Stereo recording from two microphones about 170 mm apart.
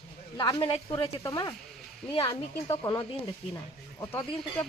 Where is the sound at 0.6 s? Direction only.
30° left (ahead or behind).